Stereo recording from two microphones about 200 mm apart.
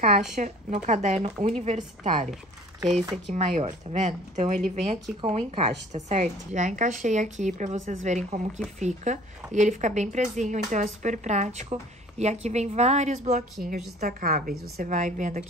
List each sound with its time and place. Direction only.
0.4 s a woman's voice: 35° right (ahead or behind)
3.3 s a woman's voice: 35° right (ahead or behind)